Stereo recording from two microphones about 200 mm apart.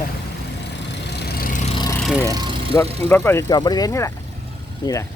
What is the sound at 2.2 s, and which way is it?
Vehicle, 20° right (ahead or behind).